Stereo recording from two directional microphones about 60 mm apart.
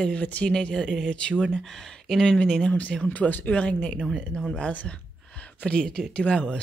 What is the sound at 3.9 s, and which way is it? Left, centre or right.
Speech, centre.